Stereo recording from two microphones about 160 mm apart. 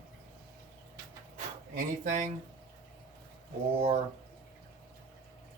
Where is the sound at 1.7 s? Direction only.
50° right (ahead or behind).